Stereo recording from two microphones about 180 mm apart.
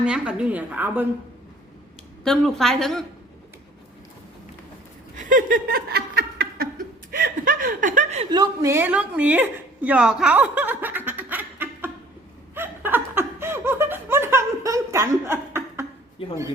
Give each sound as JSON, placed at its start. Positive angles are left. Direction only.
{"t": 0.0, "sound": "a woman's voice", "side_deg": -5}
{"t": 2.2, "sound": "a woman's voice", "side_deg": 5}
{"t": 5.1, "sound": "a sound", "side_deg": -50}
{"t": 7.1, "sound": "chuckle", "side_deg": -50}
{"t": 8.3, "sound": "a woman's voice", "side_deg": -20}
{"t": 12.5, "sound": "laughter", "side_deg": -10}
{"t": 16.2, "sound": "a man's voice", "side_deg": 30}